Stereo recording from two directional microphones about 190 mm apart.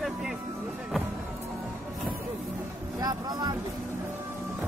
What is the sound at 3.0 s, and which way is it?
Vehicle, 20° right (ahead or behind).